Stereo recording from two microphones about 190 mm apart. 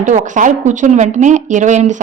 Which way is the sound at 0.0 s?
40° right (ahead or behind).